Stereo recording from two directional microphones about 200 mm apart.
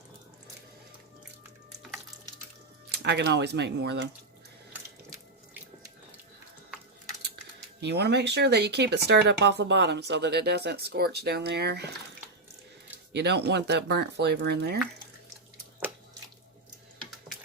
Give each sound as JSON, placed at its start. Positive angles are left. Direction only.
{"t": 3.0, "sound": "speech", "side_deg": -60}
{"t": 7.8, "sound": "speech", "side_deg": -55}
{"t": 13.1, "sound": "speech", "side_deg": -55}